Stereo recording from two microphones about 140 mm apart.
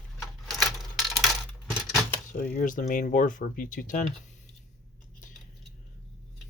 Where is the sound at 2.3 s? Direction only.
85° left; by 4.1 s 70° left (ahead or behind).